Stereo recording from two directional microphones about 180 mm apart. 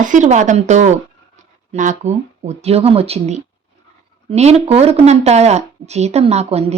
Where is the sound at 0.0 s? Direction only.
45° right (ahead or behind).